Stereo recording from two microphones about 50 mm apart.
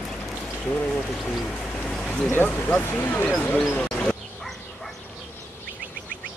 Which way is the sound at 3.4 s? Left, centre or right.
Left.